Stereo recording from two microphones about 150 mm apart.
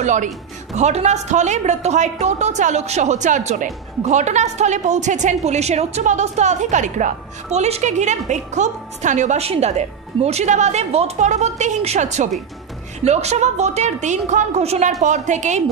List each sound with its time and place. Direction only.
0.0 s a woman's voice: 55° right (ahead or behind)